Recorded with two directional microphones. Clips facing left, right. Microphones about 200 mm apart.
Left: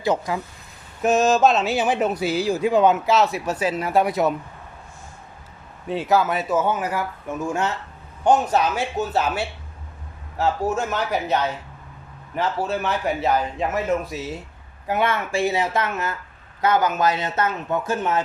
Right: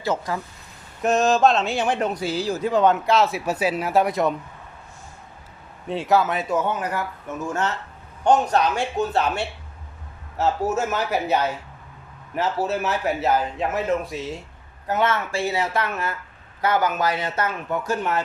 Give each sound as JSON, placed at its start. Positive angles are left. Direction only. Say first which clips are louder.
{"t": 0.0, "sound": "speech", "louder": "left 3 dB", "side_deg": 15}
{"t": 1.0, "sound": "speech", "louder": "left 1 dB", "side_deg": 0}
{"t": 5.9, "sound": "speech", "louder": "even", "side_deg": 0}